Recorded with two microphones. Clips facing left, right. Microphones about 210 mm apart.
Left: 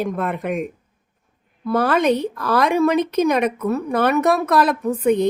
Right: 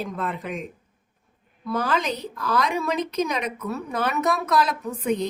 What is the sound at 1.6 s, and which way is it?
Speech, 60° left (ahead or behind).